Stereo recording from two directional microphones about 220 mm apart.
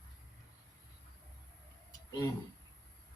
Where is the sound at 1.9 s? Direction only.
20° left (ahead or behind).